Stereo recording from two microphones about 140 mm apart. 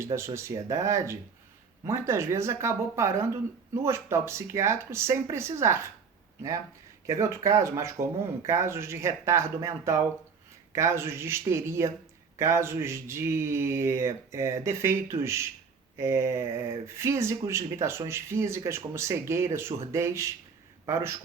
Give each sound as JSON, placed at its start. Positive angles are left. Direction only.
{"t": 0.0, "sound": "speech", "side_deg": -20}
{"t": 7.1, "sound": "speech", "side_deg": -20}